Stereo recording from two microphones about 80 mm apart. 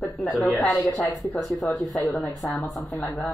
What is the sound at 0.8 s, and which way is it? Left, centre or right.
Speech, left.